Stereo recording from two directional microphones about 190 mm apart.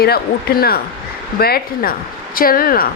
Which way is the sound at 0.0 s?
55° left (ahead or behind).